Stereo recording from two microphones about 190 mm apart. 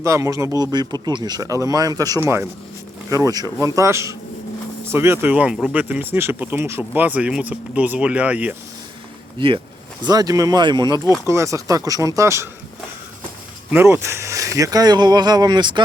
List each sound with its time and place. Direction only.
0.0 s speech: 15° right (ahead or behind)
9.4 s speech: 25° right (ahead or behind)
13.7 s speech: 10° right (ahead or behind)